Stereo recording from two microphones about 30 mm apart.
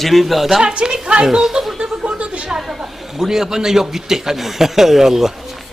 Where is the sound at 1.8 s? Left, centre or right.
Right.